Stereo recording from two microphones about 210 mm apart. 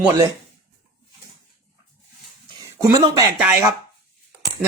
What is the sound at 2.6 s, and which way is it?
Speech, 15° right (ahead or behind).